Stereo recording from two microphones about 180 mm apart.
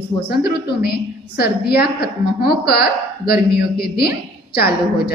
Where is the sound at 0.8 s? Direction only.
60° left (ahead or behind).